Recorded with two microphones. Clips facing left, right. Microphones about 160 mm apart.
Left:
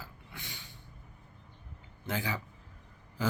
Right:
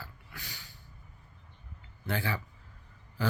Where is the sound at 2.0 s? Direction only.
15° left (ahead or behind).